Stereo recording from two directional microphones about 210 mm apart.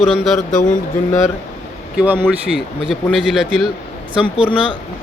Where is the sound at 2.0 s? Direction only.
10° right (ahead or behind).